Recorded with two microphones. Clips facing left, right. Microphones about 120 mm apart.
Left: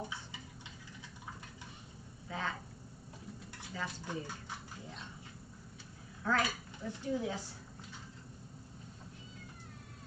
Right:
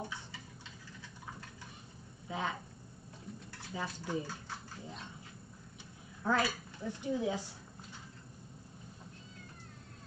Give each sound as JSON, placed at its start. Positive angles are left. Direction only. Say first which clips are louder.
{"t": 2.2, "sound": "a sound", "louder": "right 2 dB", "side_deg": -15}
{"t": 3.7, "sound": "a woman's voice", "louder": "right 3 dB", "side_deg": -15}
{"t": 6.2, "sound": "a woman's voice", "louder": "right 1 dB", "side_deg": -15}